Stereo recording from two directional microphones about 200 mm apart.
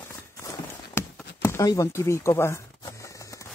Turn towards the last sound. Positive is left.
turn(degrees=15)  # may be behind; listen again after turning